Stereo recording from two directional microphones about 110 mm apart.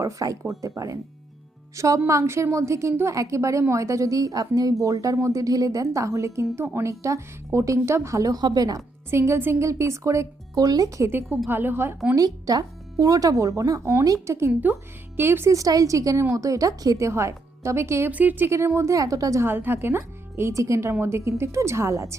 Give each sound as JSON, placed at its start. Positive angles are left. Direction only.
{"t": 0.0, "sound": "a woman's voice", "side_deg": -30}
{"t": 9.0, "sound": "a woman's voice", "side_deg": -25}
{"t": 12.1, "sound": "a woman's voice", "side_deg": -35}